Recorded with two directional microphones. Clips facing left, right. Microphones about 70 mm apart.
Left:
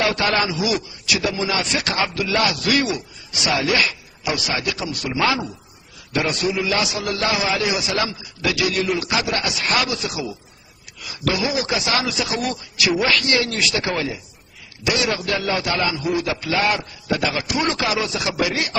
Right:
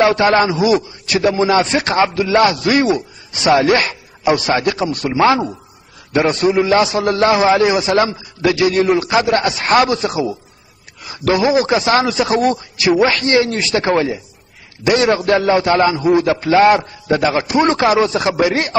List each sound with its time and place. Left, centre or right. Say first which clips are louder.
0.0 s a man's voice: right 8 dB; right